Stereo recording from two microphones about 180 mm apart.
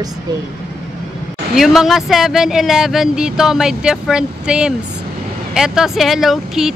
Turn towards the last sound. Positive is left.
turn(degrees=0)  # may be behind; listen again after turning